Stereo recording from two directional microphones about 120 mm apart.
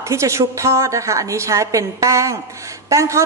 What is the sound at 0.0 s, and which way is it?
A woman's voice, 25° right (ahead or behind).